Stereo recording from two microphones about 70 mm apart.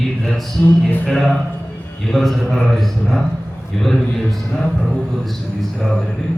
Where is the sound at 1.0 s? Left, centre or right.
Centre.